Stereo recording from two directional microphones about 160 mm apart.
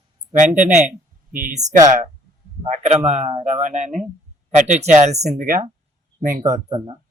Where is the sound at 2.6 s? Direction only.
45° right (ahead or behind).